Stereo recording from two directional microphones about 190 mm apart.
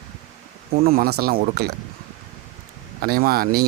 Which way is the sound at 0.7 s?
50° right (ahead or behind).